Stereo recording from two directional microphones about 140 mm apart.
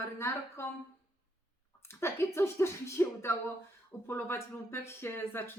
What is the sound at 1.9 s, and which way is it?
Speech, 20° left (ahead or behind).